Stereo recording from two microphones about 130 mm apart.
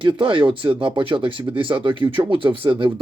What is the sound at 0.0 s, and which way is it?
Speech, 40° right (ahead or behind).